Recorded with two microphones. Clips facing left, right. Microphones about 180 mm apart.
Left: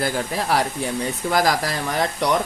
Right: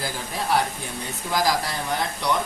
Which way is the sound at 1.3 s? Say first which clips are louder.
Left 2 dB; 65° left (ahead or behind).